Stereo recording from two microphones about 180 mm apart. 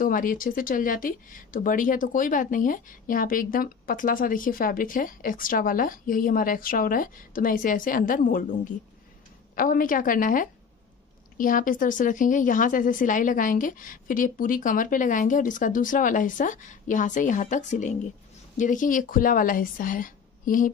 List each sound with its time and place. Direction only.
0.0 s speech: 50° left (ahead or behind)